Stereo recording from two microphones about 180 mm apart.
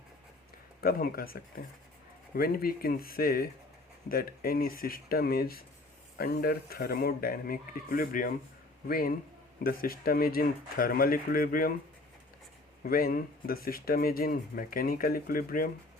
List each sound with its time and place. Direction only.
0.8 s speech: 55° left (ahead or behind)
12.8 s speech: 55° left (ahead or behind)